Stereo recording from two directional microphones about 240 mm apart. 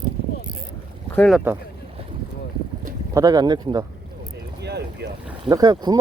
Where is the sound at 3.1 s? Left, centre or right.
Centre.